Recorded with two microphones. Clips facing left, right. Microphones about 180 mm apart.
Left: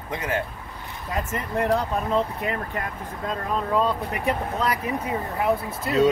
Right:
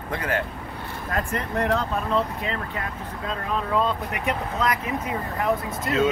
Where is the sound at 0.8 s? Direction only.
60° right (ahead or behind).